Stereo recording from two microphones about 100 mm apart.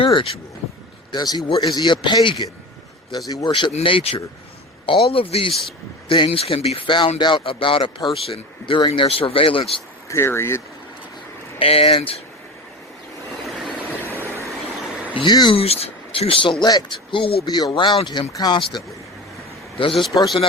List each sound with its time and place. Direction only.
0.0 s speech: 60° left (ahead or behind)
1.1 s a man's voice: 40° left (ahead or behind)
3.7 s speech: 75° left (ahead or behind); by 8.8 s 60° left (ahead or behind)
8.9 s speech: 80° left; by 9.8 s 60° left (ahead or behind)
10.1 s speech: 25° left (ahead or behind)
11.6 s speech: 70° left (ahead or behind)
14.2 s vehicle: 25° right (ahead or behind)
15.1 s a man's voice: 50° left (ahead or behind)
15.5 s a man's voice: 85° left; by 18.8 s 45° left (ahead or behind)
19.8 s speech: 60° left (ahead or behind)